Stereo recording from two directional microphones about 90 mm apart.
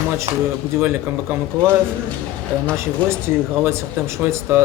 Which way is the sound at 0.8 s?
25° right (ahead or behind).